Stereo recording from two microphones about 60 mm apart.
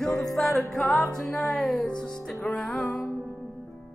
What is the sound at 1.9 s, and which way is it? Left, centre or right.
Music, centre.